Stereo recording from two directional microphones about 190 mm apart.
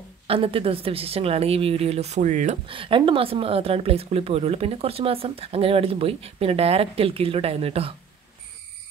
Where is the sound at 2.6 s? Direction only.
25° right (ahead or behind).